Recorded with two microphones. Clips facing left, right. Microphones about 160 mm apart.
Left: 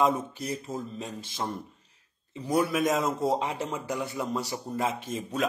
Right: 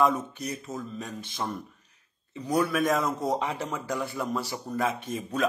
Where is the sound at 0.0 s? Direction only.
25° left (ahead or behind).